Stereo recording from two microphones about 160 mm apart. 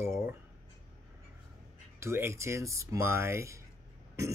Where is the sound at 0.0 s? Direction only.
15° right (ahead or behind).